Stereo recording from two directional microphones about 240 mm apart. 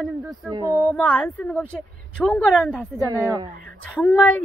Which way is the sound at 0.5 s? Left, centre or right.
Centre.